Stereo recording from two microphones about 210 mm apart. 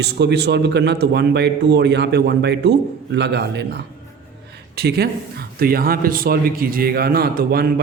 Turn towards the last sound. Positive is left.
turn(degrees=-45)  # may be behind; listen again after turning